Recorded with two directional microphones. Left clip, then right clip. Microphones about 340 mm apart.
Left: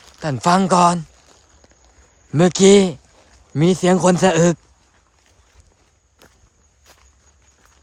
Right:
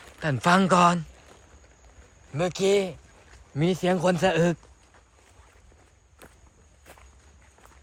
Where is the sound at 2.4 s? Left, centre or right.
Left.